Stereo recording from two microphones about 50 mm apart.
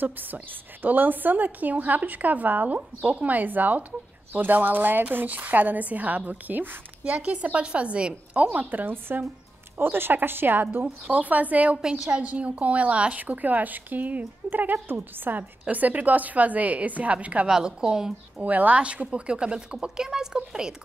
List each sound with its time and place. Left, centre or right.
0.0 s a woman's voice: right
7.1 s a woman's voice: right
8.6 s a woman's voice: right
11.1 s a woman's voice: right
17.5 s a woman's voice: centre
18.4 s a woman's voice: right; by 20.7 s centre